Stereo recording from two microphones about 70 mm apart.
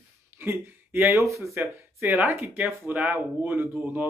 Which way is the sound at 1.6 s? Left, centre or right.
Right.